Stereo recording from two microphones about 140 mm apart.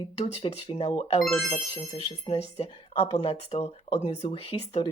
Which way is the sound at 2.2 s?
45° left (ahead or behind).